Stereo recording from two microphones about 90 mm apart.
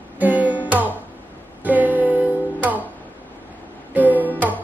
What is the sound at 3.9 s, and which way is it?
Music, 20° right (ahead or behind).